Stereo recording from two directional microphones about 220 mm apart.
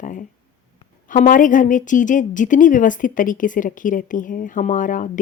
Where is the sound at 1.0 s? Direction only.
35° left (ahead or behind).